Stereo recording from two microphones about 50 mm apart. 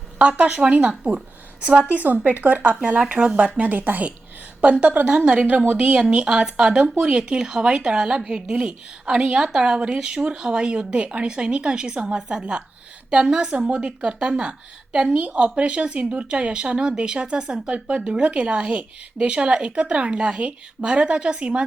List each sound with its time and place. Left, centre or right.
0.2 s speech: right
3.6 s speech: right
5.0 s speech: centre